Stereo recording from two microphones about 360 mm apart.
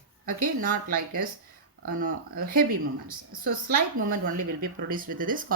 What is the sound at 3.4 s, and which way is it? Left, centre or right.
A woman's voice, right.